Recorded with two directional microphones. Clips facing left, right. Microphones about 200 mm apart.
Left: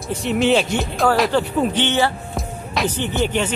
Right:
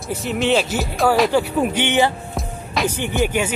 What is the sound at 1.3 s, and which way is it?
Speech, 10° right (ahead or behind).